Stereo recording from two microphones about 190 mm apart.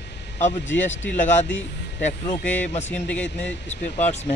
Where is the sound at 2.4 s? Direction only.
10° left (ahead or behind).